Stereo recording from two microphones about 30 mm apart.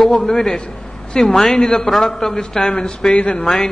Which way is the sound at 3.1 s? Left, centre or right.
Left.